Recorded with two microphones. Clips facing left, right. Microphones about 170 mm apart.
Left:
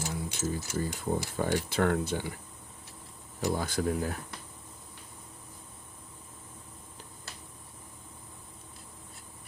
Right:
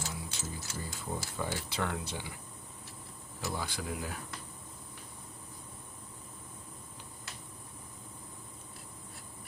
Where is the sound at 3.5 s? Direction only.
45° left (ahead or behind).